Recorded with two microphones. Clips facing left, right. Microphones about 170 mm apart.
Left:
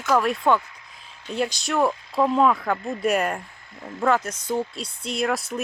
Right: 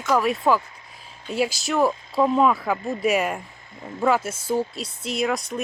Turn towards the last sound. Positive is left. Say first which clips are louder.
# right 1 dB
turn(degrees=5)  # may be behind; listen again after turning